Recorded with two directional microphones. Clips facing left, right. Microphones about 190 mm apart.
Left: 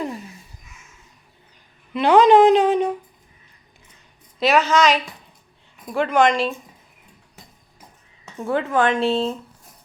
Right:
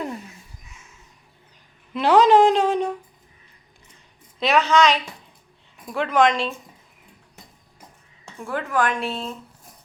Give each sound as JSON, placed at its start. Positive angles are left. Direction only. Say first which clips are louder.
{"t": 1.9, "sound": "a sound", "louder": "left 2 dB", "side_deg": 0}
{"t": 4.4, "sound": "a woman's voice", "louder": "left 1 dB", "side_deg": 0}
{"t": 8.4, "sound": "speech", "louder": "left 4 dB", "side_deg": 25}